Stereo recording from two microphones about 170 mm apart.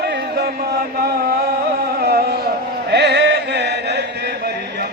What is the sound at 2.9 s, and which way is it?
Chant, 85° right.